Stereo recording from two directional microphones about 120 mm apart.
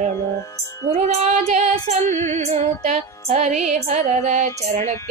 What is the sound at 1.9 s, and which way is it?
Music, 80° right.